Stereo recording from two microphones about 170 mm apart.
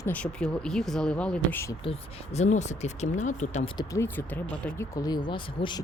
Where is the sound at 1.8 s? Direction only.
35° left (ahead or behind).